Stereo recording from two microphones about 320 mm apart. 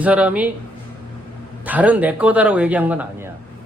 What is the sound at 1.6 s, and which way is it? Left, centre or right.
A man's voice, centre.